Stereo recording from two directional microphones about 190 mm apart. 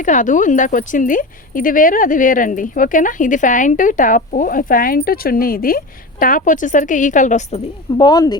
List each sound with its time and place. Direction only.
0.0 s speech: 40° left (ahead or behind)
7.9 s speech: 25° left (ahead or behind)